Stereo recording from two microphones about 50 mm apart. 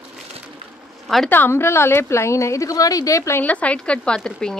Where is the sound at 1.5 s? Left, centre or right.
Left.